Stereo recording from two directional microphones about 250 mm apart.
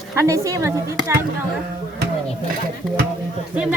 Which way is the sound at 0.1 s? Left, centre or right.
Centre.